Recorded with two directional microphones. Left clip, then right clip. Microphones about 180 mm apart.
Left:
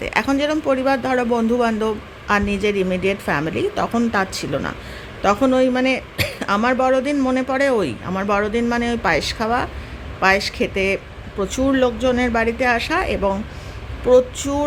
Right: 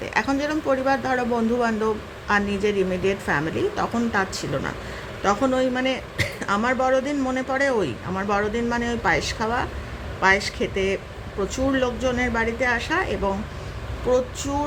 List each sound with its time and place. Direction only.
0.0 s speech: 25° left (ahead or behind)